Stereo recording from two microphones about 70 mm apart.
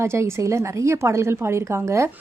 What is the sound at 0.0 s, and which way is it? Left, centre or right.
A woman's voice, right.